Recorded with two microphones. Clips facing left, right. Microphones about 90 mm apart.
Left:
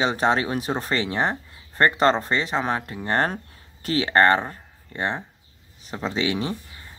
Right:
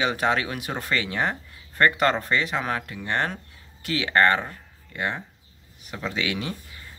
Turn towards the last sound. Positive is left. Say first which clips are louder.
# left 4 dB
turn(degrees=30)  # may be behind; listen again after turning